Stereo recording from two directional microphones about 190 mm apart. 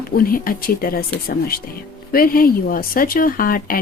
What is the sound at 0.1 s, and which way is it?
A woman's voice, 50° left (ahead or behind).